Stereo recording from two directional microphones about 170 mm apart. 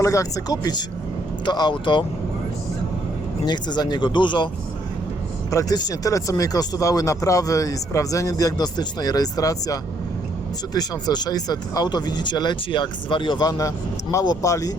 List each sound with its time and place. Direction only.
0.0 s speech: 20° left (ahead or behind)
3.4 s speech: 25° left (ahead or behind)
5.5 s speech: 20° left (ahead or behind)
10.8 s speech: 25° left (ahead or behind)